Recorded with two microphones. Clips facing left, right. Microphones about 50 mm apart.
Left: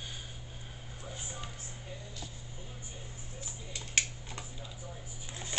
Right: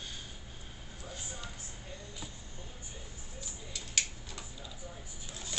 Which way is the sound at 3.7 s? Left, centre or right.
Left.